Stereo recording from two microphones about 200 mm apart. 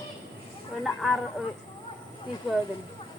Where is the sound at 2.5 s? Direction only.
Centre (ahead or behind).